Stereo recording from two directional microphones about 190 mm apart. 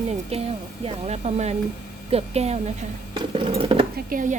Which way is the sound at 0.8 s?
35° right (ahead or behind).